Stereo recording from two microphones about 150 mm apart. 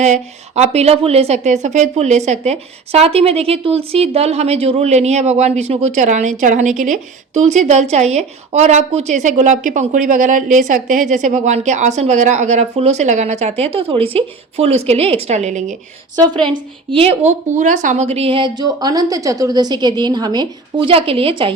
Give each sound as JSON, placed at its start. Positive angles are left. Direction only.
{"t": 0.0, "sound": "speech", "side_deg": -50}
{"t": 16.1, "sound": "a woman's voice", "side_deg": -30}